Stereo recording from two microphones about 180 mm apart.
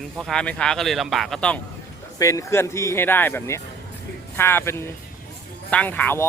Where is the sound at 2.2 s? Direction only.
15° left (ahead or behind).